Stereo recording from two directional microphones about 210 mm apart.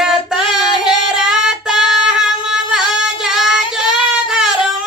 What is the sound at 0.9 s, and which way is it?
Singing, 5° right (ahead or behind).